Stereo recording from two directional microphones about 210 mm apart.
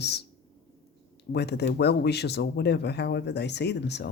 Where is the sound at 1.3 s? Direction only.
50° left (ahead or behind).